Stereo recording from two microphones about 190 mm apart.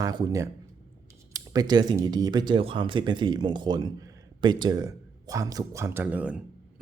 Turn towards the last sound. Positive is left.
turn(degrees=-5)  # may be behind; listen again after turning